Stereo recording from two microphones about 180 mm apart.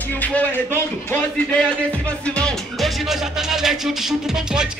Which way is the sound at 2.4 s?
Centre (ahead or behind).